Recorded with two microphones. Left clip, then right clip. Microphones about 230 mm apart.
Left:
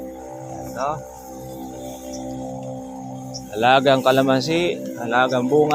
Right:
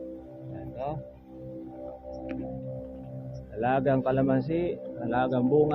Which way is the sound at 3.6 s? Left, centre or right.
Left.